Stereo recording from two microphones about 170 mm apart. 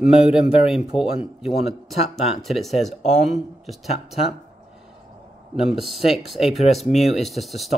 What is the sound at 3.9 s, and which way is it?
Speech, 40° left (ahead or behind).